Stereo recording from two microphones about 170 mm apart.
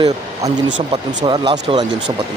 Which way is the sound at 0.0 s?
25° right (ahead or behind).